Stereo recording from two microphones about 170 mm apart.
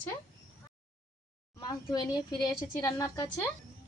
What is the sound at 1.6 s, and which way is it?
A woman's voice, 25° left (ahead or behind).